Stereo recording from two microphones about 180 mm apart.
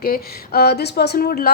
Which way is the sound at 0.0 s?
60° left (ahead or behind).